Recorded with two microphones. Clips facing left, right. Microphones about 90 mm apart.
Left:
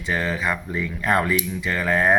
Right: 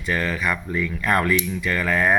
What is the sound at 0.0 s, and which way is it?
Speech, 20° left (ahead or behind).